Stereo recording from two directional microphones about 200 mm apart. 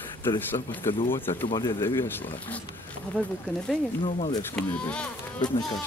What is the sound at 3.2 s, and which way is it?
Speech, 10° right (ahead or behind).